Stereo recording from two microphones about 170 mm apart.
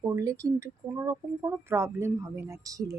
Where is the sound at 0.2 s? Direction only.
20° right (ahead or behind).